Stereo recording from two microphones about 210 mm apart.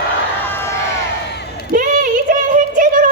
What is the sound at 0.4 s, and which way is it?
Crowd, 10° left (ahead or behind).